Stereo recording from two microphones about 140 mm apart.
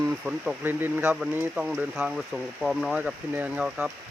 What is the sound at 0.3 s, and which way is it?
Speech, 10° right (ahead or behind).